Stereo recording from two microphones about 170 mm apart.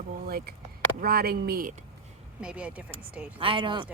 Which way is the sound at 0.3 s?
65° right (ahead or behind).